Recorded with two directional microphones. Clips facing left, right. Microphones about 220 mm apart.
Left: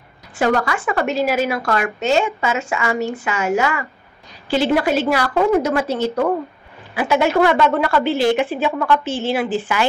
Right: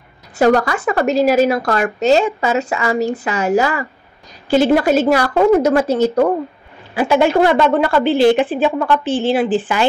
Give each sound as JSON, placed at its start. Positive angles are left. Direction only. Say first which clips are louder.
{"t": 0.4, "sound": "a woman's voice", "louder": "right 5 dB", "side_deg": -40}
{"t": 7.0, "sound": "a woman's voice", "louder": "right 3 dB", "side_deg": -30}